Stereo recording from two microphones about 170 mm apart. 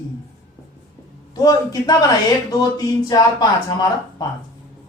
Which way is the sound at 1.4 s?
20° left (ahead or behind).